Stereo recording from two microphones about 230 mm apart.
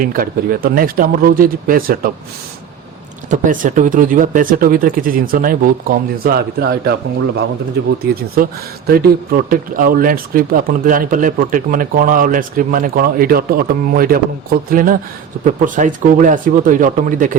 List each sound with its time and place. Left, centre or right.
0.0 s speech: right
3.2 s speech: right
8.9 s speech: right